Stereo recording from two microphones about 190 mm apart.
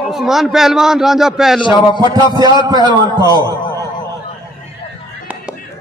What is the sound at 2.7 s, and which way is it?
Speech, 20° right (ahead or behind).